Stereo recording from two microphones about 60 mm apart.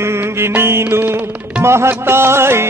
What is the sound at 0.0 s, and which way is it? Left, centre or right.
Music, right.